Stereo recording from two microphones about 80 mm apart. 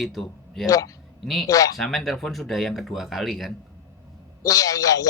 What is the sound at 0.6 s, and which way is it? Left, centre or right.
Speech, left.